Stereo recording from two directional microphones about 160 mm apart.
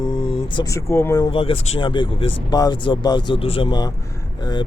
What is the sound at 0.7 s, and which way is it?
Speech, 15° left (ahead or behind).